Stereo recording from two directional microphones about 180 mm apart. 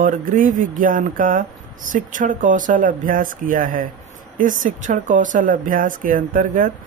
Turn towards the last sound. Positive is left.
turn(degrees=-45)  # may be behind; listen again after turning